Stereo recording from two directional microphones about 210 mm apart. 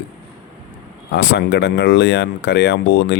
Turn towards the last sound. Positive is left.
turn(degrees=55)  # may be behind; listen again after turning